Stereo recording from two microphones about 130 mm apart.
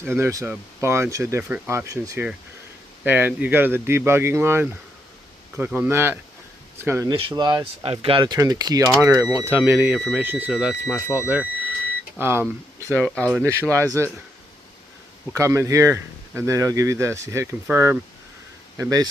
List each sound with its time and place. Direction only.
0.0 s speech: 20° right (ahead or behind)
5.9 s speech: 20° right (ahead or behind)
7.1 s speech: 40° right (ahead or behind)
7.6 s speech: 45° right (ahead or behind); by 12.4 s 20° right (ahead or behind)
12.8 s speech: 15° left (ahead or behind)
13.3 s speech: 15° right (ahead or behind)
15.3 s speech: 25° right (ahead or behind)